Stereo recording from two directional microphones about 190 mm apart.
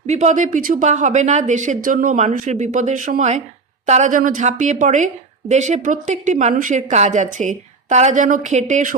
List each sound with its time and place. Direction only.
0.1 s a woman's voice: 40° right (ahead or behind)